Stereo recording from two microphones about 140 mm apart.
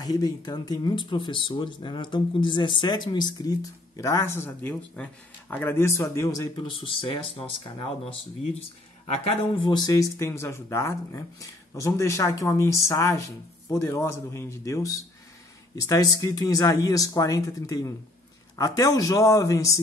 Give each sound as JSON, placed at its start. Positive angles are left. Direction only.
{"t": 0.0, "sound": "speech", "side_deg": 25}
{"t": 6.5, "sound": "speech", "side_deg": 35}
{"t": 9.6, "sound": "speech", "side_deg": 30}